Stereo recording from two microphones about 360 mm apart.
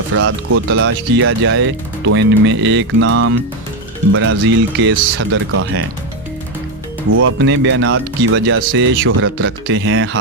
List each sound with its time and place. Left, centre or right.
0.1 s speech: right
7.1 s speech: right